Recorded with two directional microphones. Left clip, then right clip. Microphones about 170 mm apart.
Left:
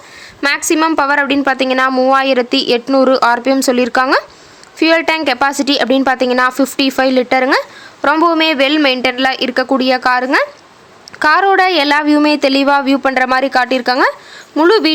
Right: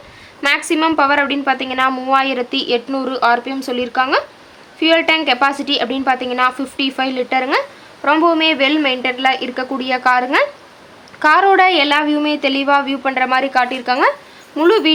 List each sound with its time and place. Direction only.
0.4 s a woman's voice: 35° left (ahead or behind)